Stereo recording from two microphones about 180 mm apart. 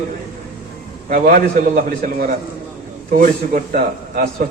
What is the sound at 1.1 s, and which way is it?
A man's voice, 50° right (ahead or behind).